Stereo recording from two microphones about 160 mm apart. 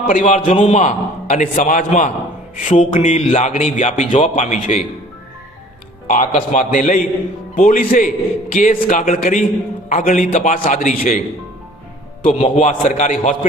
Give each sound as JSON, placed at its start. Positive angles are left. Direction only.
{"t": 0.1, "sound": "speech", "side_deg": 55}
{"t": 6.1, "sound": "a man's voice", "side_deg": 55}
{"t": 12.4, "sound": "speech", "side_deg": 45}